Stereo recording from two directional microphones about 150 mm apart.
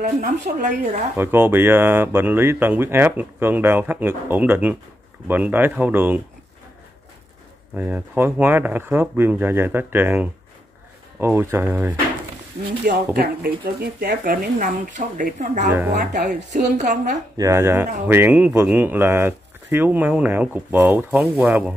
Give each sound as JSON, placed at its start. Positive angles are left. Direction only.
{"t": 0.4, "sound": "a woman's voice", "side_deg": -55}
{"t": 1.1, "sound": "speech", "side_deg": -15}
{"t": 7.7, "sound": "speech", "side_deg": -10}
{"t": 12.8, "sound": "speech", "side_deg": -90}
{"t": 15.9, "sound": "speech", "side_deg": -90}
{"t": 16.7, "sound": "a woman's voice", "side_deg": -50}
{"t": 17.4, "sound": "speech", "side_deg": -20}